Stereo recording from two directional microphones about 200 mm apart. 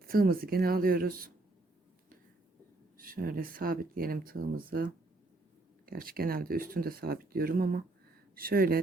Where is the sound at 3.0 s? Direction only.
45° right (ahead or behind).